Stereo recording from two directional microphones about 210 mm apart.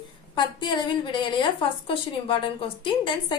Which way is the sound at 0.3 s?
20° left (ahead or behind).